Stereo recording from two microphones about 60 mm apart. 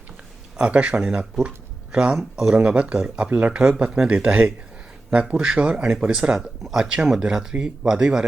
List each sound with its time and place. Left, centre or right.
0.5 s speech: centre
2.1 s speech: centre
2.6 s speech: centre